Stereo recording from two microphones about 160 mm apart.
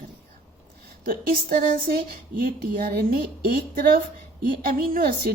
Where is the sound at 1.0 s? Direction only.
65° right (ahead or behind).